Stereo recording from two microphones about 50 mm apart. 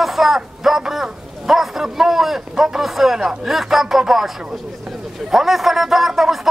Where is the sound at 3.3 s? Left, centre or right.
Centre.